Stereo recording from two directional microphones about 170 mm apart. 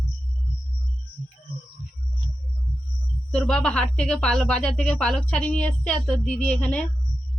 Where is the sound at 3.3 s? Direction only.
5° left (ahead or behind).